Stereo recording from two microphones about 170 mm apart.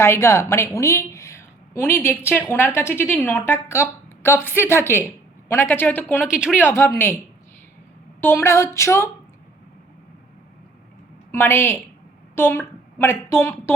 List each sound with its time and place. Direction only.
0.0 s a woman's voice: 15° left (ahead or behind)
6.2 s speech: 5° right (ahead or behind)
6.6 s a woman's voice: 15° left (ahead or behind)
8.2 s a woman's voice: 15° left (ahead or behind)
11.3 s a woman's voice: 15° left (ahead or behind)